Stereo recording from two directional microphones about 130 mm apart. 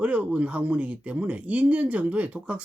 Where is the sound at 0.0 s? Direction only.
10° right (ahead or behind).